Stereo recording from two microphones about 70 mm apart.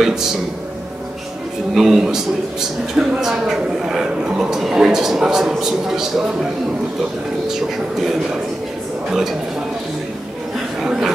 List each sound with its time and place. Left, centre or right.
1.7 s a man's voice: centre
8.0 s speech: centre
10.8 s a sound: centre